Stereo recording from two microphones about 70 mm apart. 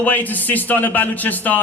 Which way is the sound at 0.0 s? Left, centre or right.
Left.